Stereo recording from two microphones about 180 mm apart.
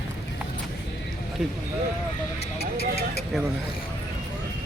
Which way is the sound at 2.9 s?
60° left (ahead or behind).